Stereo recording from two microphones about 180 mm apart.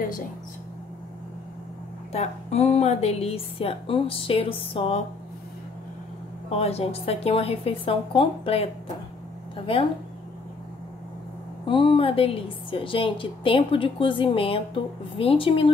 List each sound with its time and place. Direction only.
2.1 s a woman's voice: 35° left (ahead or behind)
6.5 s a woman's voice: 35° left (ahead or behind)
11.6 s a woman's voice: 25° left (ahead or behind)